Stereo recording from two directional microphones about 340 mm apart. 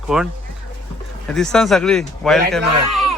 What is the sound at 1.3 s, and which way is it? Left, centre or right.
Speech, centre.